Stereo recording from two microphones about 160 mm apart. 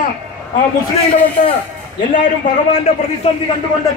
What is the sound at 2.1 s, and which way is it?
Speech, 50° left (ahead or behind).